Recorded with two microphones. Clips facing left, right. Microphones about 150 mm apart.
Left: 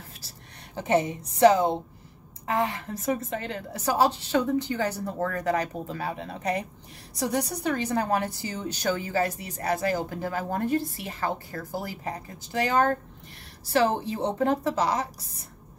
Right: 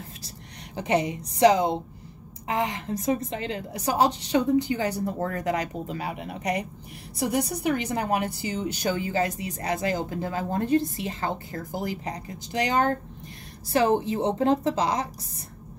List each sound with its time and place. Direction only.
0.7 s a woman's voice: 15° right (ahead or behind)